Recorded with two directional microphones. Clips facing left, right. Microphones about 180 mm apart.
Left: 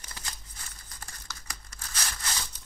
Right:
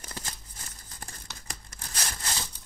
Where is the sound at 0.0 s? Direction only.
40° right (ahead or behind).